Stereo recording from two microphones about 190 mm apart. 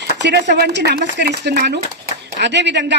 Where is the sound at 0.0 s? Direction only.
65° right (ahead or behind).